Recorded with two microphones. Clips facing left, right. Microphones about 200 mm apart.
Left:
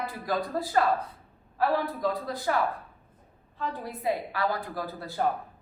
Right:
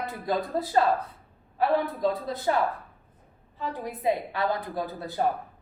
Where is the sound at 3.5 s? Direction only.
15° right (ahead or behind).